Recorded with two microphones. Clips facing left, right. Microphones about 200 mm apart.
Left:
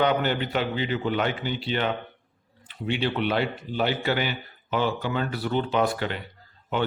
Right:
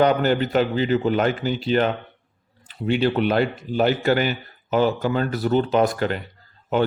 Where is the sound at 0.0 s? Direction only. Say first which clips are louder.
Right 5 dB; 40° right (ahead or behind).